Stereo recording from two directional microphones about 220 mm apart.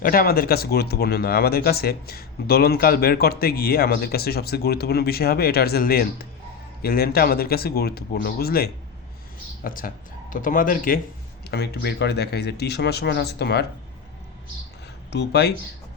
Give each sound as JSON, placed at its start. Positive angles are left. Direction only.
{"t": 0.0, "sound": "speech", "side_deg": 40}
{"t": 15.1, "sound": "speech", "side_deg": 50}